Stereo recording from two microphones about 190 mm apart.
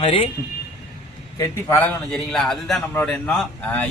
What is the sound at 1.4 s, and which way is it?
A man's voice, 10° left (ahead or behind).